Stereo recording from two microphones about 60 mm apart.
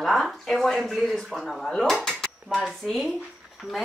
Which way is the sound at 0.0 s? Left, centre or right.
Centre.